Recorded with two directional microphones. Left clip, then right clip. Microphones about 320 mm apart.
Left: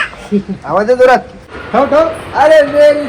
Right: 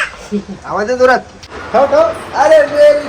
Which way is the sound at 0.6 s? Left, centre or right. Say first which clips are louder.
Left 3 dB; centre.